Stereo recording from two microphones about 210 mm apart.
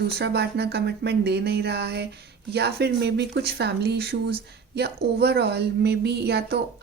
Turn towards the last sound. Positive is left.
turn(degrees=-50)  # may be behind; listen again after turning